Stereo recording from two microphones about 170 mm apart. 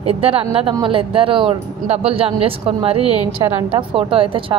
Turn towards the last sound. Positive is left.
turn(degrees=-30)  # may be behind; listen again after turning